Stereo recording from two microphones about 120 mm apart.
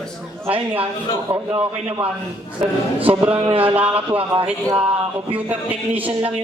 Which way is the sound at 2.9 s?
10° right (ahead or behind).